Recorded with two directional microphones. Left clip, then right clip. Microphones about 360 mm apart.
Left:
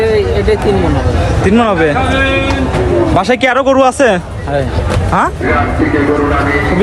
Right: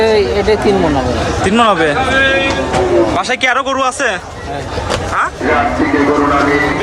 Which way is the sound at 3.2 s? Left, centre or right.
Centre.